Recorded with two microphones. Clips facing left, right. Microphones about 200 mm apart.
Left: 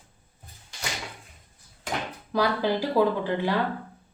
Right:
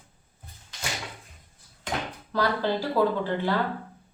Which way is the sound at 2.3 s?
15° left (ahead or behind).